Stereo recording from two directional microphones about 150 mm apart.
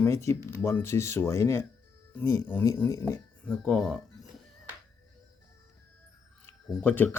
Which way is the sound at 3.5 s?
5° left (ahead or behind).